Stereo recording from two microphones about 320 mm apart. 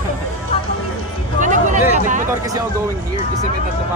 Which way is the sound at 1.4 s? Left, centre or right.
Right.